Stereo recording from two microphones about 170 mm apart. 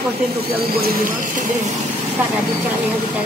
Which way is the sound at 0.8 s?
55° right (ahead or behind).